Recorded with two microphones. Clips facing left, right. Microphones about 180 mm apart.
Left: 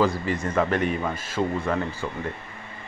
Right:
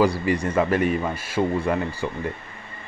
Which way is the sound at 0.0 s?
10° right (ahead or behind).